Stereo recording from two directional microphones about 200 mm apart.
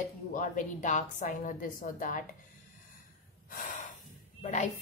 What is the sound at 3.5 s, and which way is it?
Snort, 40° left (ahead or behind).